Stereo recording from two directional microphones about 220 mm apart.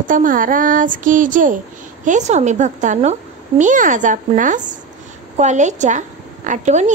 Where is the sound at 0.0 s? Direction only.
35° right (ahead or behind).